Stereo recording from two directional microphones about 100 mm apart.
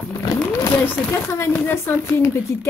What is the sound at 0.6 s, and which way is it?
Speech, 30° left (ahead or behind).